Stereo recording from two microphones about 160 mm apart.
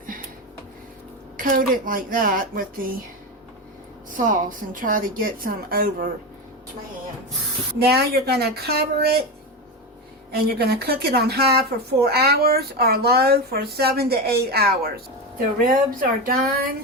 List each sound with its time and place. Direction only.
1.4 s a woman's voice: 60° right (ahead or behind)
4.2 s a woman's voice: 55° right (ahead or behind)
7.8 s speech: 80° right
10.3 s speech: 75° right (ahead or behind)
15.6 s a woman's voice: 55° right (ahead or behind)